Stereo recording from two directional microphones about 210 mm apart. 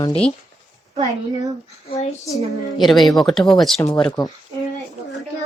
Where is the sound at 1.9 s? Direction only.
30° left (ahead or behind).